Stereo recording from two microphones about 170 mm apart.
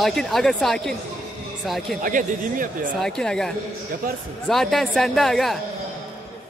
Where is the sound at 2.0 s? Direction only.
55° right (ahead or behind).